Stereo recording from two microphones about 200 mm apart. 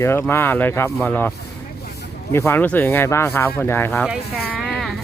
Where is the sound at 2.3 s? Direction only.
10° left (ahead or behind).